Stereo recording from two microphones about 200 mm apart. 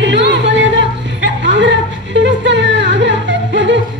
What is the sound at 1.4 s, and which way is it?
Dog, 65° right (ahead or behind).